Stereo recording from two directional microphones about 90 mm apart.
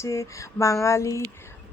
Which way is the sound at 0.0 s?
35° left (ahead or behind).